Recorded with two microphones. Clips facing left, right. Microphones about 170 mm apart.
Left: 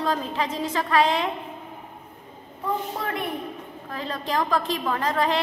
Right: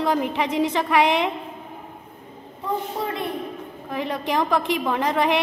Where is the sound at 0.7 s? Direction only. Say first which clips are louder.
Left 1 dB; 20° right (ahead or behind).